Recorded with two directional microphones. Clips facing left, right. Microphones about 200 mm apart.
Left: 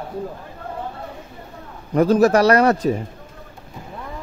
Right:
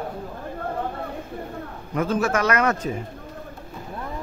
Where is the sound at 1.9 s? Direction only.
40° left (ahead or behind).